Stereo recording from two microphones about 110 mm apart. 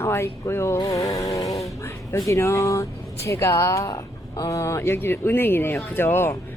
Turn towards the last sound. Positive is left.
turn(degrees=20)  # may be behind; listen again after turning